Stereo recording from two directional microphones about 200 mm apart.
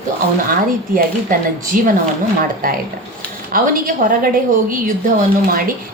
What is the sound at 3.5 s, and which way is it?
A woman's voice, 45° right (ahead or behind).